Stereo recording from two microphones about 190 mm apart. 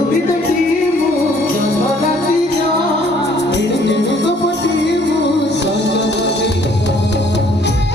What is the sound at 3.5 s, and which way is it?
Music, 65° left (ahead or behind).